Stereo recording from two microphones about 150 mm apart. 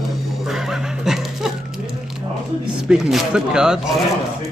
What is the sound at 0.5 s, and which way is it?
Music, centre (ahead or behind).